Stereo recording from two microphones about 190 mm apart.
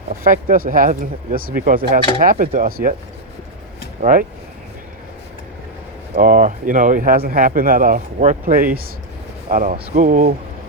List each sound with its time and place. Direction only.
0.3 s speech: 50° right (ahead or behind)
4.0 s speech: 45° right (ahead or behind)
6.1 s speech: 45° right (ahead or behind)